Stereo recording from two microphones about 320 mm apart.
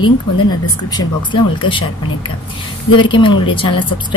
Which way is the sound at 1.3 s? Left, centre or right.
Centre.